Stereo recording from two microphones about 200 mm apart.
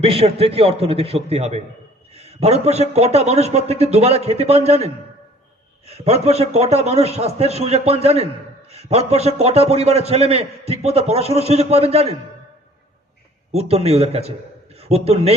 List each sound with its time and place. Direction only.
0.0 s a man's voice: 30° right (ahead or behind)
13.5 s a man's voice: 30° right (ahead or behind)